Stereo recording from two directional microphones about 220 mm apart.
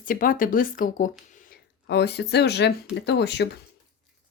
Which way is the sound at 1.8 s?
50° left (ahead or behind).